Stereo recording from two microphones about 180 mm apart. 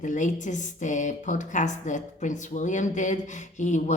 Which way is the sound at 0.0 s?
45° left (ahead or behind).